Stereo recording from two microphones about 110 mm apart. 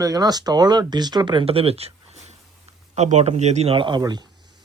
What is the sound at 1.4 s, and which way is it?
Speech, 65° right (ahead or behind).